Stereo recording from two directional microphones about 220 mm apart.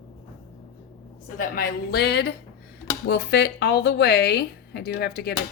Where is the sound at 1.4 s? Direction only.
40° left (ahead or behind).